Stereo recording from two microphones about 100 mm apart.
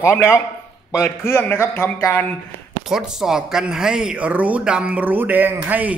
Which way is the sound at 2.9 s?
5° right (ahead or behind).